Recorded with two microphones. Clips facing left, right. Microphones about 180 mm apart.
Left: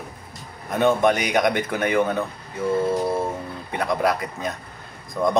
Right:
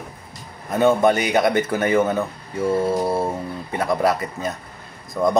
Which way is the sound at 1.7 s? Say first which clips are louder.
Right 2 dB; 5° right (ahead or behind).